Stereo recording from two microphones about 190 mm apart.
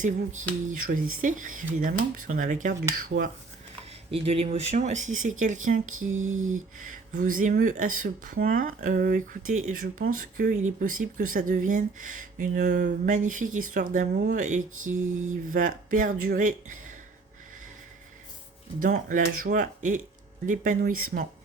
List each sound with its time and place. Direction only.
0.0 s speech: 40° right (ahead or behind)
4.1 s speech: 30° right (ahead or behind)
6.1 s a sound: 90° right
6.7 s speech: 45° right (ahead or behind)
18.8 s speech: 45° right (ahead or behind)